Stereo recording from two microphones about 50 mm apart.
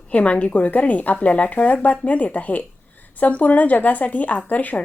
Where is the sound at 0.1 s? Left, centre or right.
Left.